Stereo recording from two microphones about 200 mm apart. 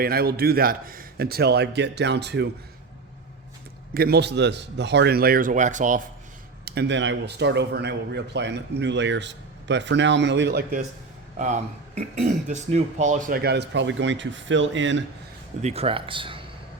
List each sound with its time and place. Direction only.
0.0 s a man's voice: 50° right (ahead or behind)
3.9 s a man's voice: 50° right (ahead or behind)
6.7 s speech: 60° right (ahead or behind)
11.3 s speech: 35° right (ahead or behind); by 15.0 s 65° right (ahead or behind)
15.6 s speech: 30° right (ahead or behind)